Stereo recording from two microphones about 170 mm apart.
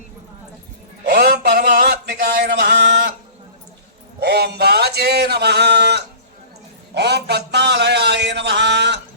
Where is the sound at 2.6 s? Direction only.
85° right.